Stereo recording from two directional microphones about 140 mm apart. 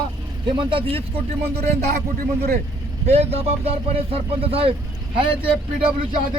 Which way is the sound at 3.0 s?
50° right (ahead or behind).